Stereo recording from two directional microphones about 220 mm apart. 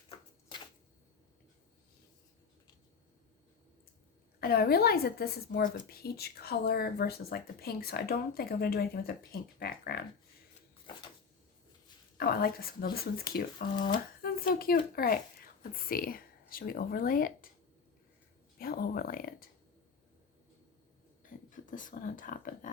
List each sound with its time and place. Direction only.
4.4 s a woman's voice: 45° left (ahead or behind)
12.1 s a woman's voice: 40° left (ahead or behind)
18.6 s speech: 40° left (ahead or behind)
21.5 s speech: 35° left (ahead or behind)